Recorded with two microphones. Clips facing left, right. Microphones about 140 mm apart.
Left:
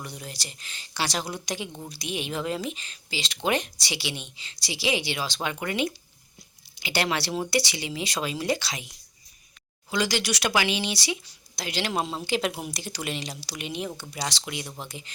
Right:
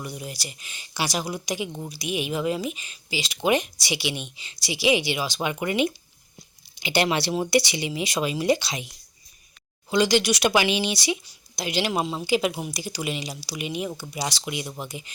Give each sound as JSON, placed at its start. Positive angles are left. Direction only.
{"t": 0.0, "sound": "speech", "side_deg": -10}
{"t": 9.9, "sound": "speech", "side_deg": -20}